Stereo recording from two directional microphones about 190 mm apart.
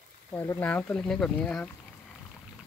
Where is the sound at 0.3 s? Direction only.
10° left (ahead or behind).